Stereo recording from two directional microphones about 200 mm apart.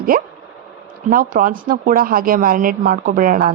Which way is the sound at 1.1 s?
45° right (ahead or behind).